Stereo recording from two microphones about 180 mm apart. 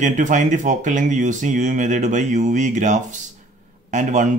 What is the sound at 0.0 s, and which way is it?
A man's voice, 45° right (ahead or behind).